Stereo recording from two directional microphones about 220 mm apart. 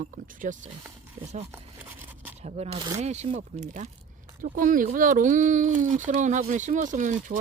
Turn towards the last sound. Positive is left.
turn(degrees=-35)  # may be behind; listen again after turning